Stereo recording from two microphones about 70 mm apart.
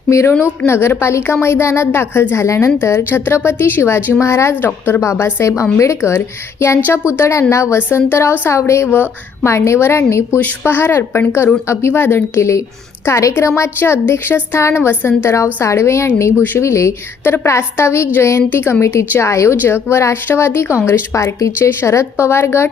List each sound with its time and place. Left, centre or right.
0.1 s a woman's voice: left